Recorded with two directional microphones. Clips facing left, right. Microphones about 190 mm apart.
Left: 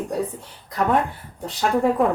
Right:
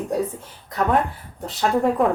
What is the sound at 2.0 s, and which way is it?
Speech, centre (ahead or behind).